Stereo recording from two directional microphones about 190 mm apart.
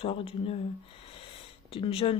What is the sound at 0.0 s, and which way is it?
Speech, 30° left (ahead or behind).